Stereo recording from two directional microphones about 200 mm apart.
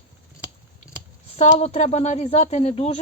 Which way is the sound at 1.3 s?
30° left (ahead or behind).